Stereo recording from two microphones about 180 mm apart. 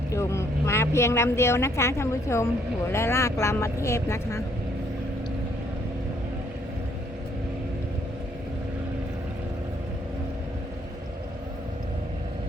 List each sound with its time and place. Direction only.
0.1 s speech: 15° left (ahead or behind)